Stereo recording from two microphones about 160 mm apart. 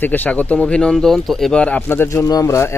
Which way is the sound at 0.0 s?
10° left (ahead or behind).